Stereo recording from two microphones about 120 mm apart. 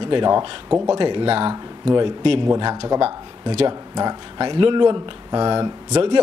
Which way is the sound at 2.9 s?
50° right (ahead or behind).